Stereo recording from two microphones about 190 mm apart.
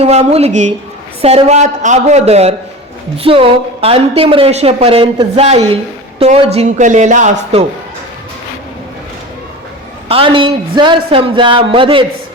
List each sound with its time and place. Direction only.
0.0 s a woman's voice: 35° right (ahead or behind)
10.1 s a woman's voice: 25° right (ahead or behind)